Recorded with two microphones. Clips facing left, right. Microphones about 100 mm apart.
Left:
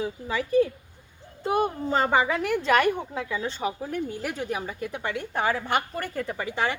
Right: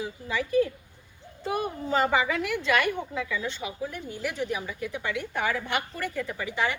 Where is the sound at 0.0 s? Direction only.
35° left (ahead or behind).